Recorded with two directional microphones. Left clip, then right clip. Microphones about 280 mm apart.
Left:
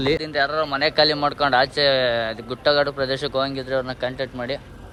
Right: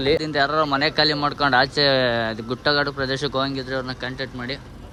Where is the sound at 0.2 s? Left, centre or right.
Centre.